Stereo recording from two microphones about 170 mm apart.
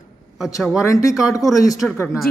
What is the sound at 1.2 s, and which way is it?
Speech, 5° right (ahead or behind).